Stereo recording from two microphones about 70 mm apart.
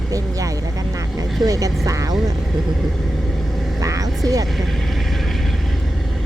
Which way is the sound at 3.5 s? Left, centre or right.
Centre.